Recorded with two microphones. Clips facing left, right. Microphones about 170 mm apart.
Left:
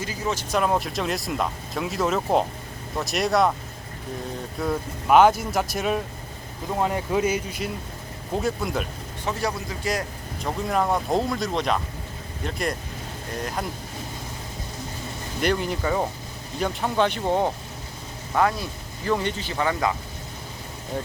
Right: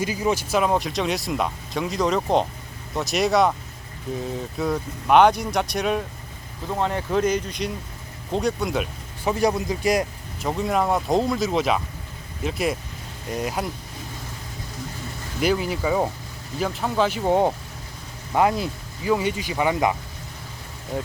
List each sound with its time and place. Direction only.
0.0 s speech: 15° right (ahead or behind)
4.5 s speech: centre (ahead or behind)
9.2 s speech: 15° right (ahead or behind)
10.4 s speech: centre (ahead or behind)
15.4 s speech: 5° right (ahead or behind)
19.0 s speech: 10° right (ahead or behind)